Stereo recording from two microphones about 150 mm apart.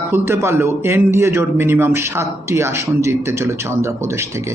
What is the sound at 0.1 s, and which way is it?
A man's voice, 15° right (ahead or behind).